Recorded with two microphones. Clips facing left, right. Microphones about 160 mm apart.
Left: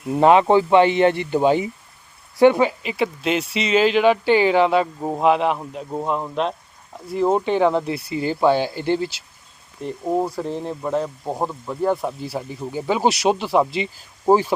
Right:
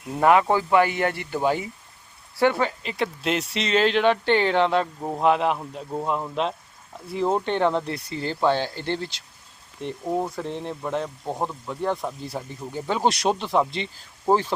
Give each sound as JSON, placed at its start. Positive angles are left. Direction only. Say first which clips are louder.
{"t": 0.1, "sound": "speech", "louder": "left 5 dB", "side_deg": 20}
{"t": 5.2, "sound": "speech", "louder": "left 3 dB", "side_deg": 0}
{"t": 5.5, "sound": "speech", "louder": "left 3 dB", "side_deg": 10}
{"t": 6.1, "sound": "speech", "louder": "left 3 dB", "side_deg": 0}
{"t": 10.2, "sound": "speech", "louder": "left 4 dB", "side_deg": 5}